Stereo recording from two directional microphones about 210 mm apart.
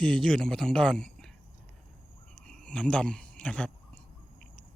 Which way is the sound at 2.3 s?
5° left (ahead or behind).